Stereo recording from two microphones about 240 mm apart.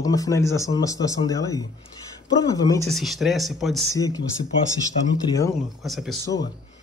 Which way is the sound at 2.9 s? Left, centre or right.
Centre.